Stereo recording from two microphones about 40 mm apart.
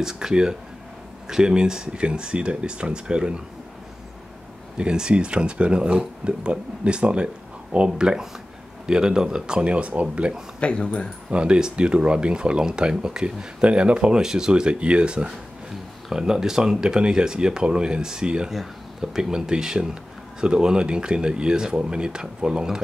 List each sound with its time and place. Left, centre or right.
0.0 s speech: centre
4.7 s speech: right
10.6 s speech: left
11.2 s speech: right
14.2 s speech: centre
14.5 s speech: right
16.1 s speech: centre
18.5 s speech: centre